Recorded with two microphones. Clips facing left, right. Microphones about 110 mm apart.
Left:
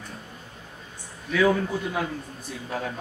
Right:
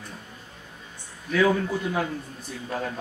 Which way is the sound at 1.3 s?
Centre (ahead or behind).